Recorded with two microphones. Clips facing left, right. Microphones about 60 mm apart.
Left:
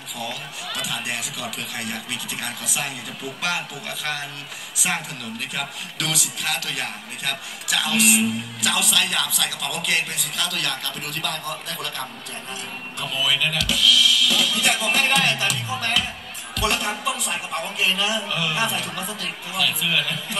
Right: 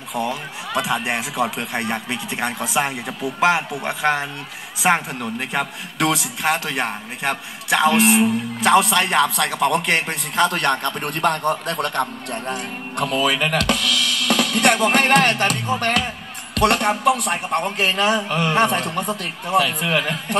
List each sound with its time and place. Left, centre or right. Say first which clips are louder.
0.1 s a man's voice: right 8 dB; right